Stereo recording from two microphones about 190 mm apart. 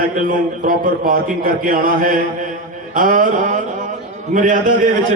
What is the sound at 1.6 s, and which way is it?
A man's voice, 45° right (ahead or behind).